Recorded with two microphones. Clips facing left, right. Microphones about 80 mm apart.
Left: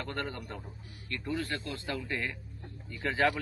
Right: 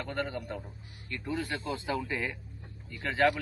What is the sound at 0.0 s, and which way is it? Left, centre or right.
Speech, centre.